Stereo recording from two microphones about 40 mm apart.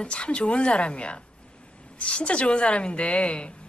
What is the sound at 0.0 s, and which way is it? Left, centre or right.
A woman's voice, left.